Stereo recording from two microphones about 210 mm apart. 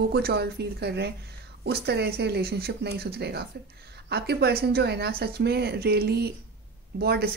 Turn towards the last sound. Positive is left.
turn(degrees=-50)  # may be behind; listen again after turning